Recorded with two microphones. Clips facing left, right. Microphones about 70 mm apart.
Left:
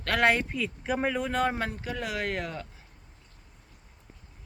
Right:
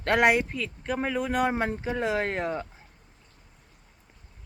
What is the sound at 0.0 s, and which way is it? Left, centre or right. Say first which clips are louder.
Speech: right 3 dB; right.